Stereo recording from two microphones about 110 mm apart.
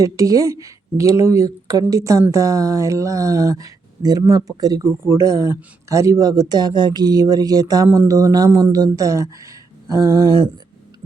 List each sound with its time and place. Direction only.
0.0 s speech: 30° right (ahead or behind)